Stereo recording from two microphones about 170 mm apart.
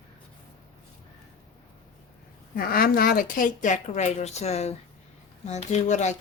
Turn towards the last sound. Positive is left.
turn(degrees=45)  # may be behind; listen again after turning